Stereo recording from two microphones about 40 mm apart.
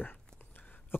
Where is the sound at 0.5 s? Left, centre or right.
Left.